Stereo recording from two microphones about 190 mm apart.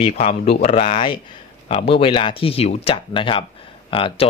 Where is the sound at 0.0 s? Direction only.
35° left (ahead or behind).